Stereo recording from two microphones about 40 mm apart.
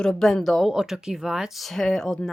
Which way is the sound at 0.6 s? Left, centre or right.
Centre.